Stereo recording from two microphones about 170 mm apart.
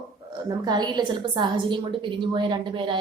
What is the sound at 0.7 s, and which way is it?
A woman's voice, 25° right (ahead or behind).